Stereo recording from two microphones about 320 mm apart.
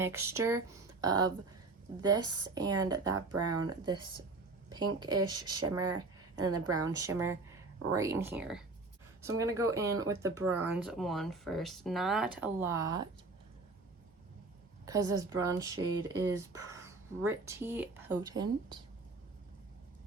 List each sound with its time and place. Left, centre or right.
0.0 s speech: centre
3.3 s speech: right
3.7 s speech: centre
6.0 s a sound: centre
6.7 s speech: centre
14.8 s speech: centre